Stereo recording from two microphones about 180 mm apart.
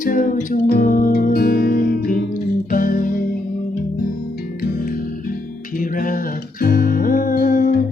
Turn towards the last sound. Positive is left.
turn(degrees=50)  # may be behind; listen again after turning